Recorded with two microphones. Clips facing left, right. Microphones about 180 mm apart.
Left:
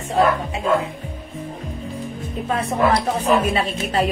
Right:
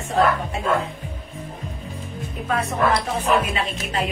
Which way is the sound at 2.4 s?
30° left (ahead or behind).